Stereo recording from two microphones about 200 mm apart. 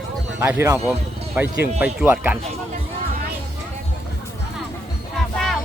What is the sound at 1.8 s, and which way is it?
Speech, 10° right (ahead or behind).